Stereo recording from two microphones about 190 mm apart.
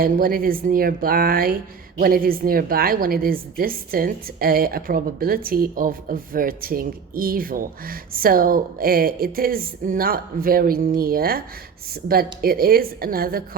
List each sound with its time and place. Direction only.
0.0 s a woman's voice: 50° right (ahead or behind)